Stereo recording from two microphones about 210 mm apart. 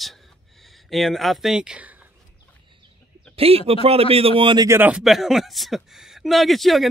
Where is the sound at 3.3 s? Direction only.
30° right (ahead or behind); by 6.8 s centre (ahead or behind).